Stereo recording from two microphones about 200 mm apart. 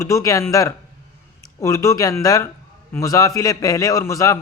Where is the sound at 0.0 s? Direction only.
15° left (ahead or behind).